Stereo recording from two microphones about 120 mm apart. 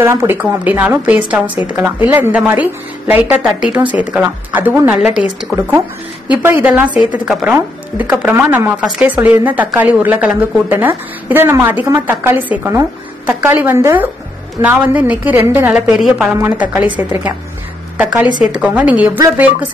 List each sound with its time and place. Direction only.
0.0 s a woman's voice: 20° right (ahead or behind)
15.7 s a woman's voice: 5° right (ahead or behind)
19.1 s speech: 20° right (ahead or behind)